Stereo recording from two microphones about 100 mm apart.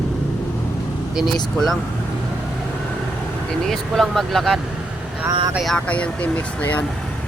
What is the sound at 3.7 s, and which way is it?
Speech, centre (ahead or behind).